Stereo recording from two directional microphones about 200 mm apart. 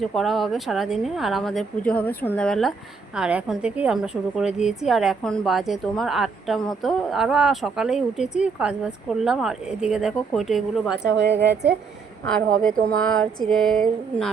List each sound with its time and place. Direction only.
0.0 s a woman's voice: centre (ahead or behind)
10.9 s a woman's voice: 55° right (ahead or behind)
12.2 s a woman's voice: 5° left (ahead or behind)